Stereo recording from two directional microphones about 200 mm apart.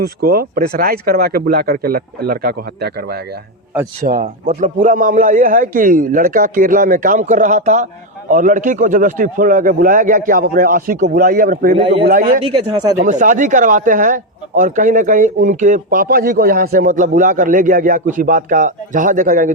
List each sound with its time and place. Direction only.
0.0 s a man's voice: 50° right (ahead or behind)
12.2 s speech: 30° right (ahead or behind)
13.1 s speech: 40° right (ahead or behind)